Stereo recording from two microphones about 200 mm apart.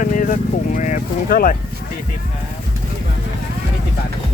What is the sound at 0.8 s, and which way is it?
Speech, 40° left (ahead or behind).